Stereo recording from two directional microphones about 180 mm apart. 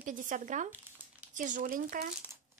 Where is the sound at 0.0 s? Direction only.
45° right (ahead or behind).